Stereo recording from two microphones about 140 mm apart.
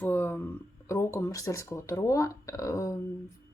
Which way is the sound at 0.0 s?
15° left (ahead or behind).